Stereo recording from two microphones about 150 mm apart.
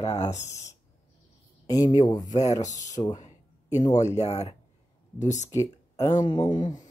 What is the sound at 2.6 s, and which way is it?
Speech, 50° left (ahead or behind).